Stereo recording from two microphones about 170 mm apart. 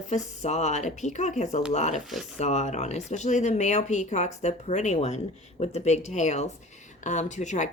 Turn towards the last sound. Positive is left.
turn(degrees=45)  # may be behind; listen again after turning